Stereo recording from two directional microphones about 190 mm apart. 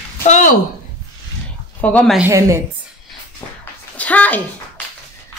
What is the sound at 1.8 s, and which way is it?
Speech, 5° left (ahead or behind).